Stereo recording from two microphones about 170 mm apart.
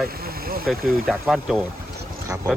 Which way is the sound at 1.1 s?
Centre (ahead or behind).